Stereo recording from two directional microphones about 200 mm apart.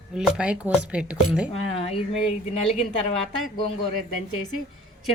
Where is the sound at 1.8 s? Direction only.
30° left (ahead or behind).